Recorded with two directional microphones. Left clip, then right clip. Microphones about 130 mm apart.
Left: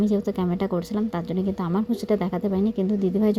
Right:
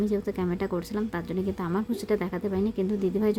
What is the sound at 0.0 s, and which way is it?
Speech, 25° left (ahead or behind).